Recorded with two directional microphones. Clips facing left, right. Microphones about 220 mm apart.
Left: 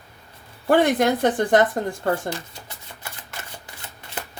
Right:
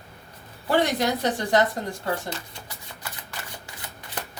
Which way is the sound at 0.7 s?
50° left (ahead or behind).